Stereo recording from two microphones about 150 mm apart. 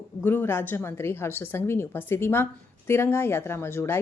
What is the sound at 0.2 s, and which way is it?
A woman's voice, 15° left (ahead or behind).